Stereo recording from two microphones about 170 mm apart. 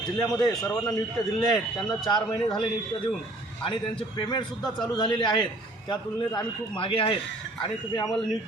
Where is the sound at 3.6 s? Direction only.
30° left (ahead or behind).